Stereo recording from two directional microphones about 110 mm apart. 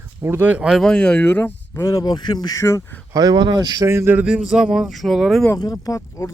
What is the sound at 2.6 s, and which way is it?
Speech, 25° left (ahead or behind).